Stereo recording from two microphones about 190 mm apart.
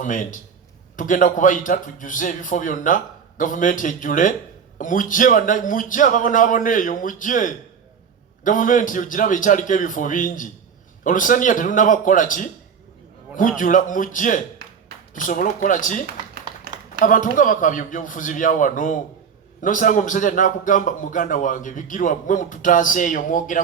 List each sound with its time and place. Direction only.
0.0 s a man's voice: 45° left (ahead or behind)
13.6 s a man's voice: 45° left (ahead or behind)